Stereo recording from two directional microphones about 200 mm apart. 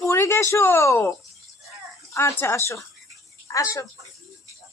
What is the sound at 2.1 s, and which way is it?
Speech, 10° left (ahead or behind).